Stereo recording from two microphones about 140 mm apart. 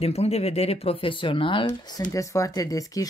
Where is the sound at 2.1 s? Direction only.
25° left (ahead or behind).